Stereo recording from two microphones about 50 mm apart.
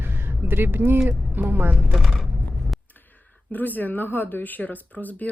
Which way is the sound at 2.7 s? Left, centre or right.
Centre.